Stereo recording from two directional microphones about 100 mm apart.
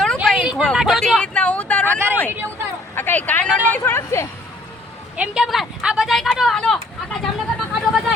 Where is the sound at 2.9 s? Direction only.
20° left (ahead or behind).